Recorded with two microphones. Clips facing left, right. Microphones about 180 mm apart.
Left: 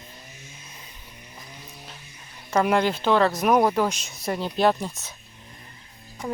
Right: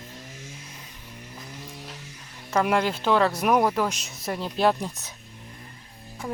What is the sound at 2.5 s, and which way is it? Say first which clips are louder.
Speech: left 2 dB; centre (ahead or behind).